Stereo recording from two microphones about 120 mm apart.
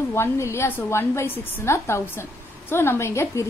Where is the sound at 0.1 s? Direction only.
20° left (ahead or behind).